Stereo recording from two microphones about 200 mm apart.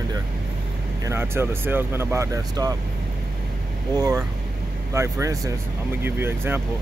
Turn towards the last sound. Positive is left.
turn(degrees=-10)  # may be behind; listen again after turning